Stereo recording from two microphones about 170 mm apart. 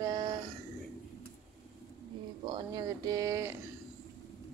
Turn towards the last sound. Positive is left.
turn(degrees=-20)  # may be behind; listen again after turning